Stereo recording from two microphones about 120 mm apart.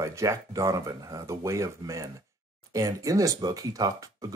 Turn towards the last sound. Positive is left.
turn(degrees=-30)  # may be behind; listen again after turning